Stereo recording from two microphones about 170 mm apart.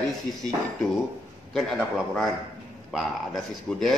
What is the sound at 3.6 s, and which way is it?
Speech, centre (ahead or behind).